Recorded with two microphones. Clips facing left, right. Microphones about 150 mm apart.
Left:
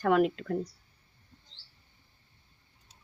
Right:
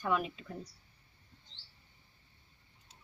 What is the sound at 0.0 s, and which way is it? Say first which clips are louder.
Speech: left 9 dB; 75° left (ahead or behind).